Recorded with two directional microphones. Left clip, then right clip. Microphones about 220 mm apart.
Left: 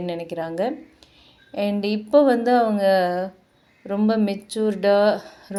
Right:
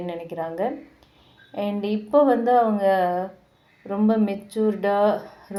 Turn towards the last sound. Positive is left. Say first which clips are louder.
# left 1 dB
turn(degrees=35)  # may be behind; listen again after turning